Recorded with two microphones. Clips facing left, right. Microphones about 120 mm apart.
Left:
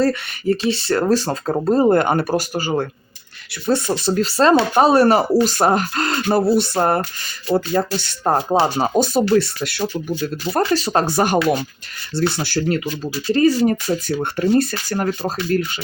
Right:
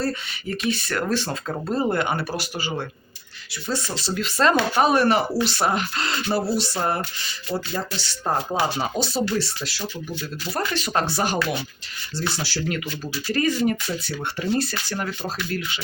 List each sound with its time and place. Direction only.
0.4 s speech: 30° left (ahead or behind); by 4.2 s 55° left (ahead or behind)
4.2 s speech: 35° left (ahead or behind); by 8.5 s 50° left (ahead or behind)
8.5 s speech: 40° left (ahead or behind)
10.6 s speech: 35° left (ahead or behind)